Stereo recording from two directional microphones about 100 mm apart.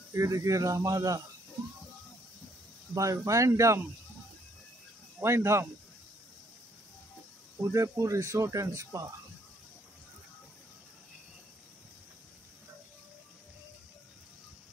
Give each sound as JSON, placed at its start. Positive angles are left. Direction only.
{"t": 0.1, "sound": "speech", "side_deg": -30}
{"t": 2.9, "sound": "speech", "side_deg": -35}
{"t": 5.2, "sound": "speech", "side_deg": -25}
{"t": 7.7, "sound": "speech", "side_deg": -30}